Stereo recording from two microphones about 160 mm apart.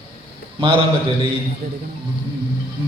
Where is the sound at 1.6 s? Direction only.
65° right (ahead or behind).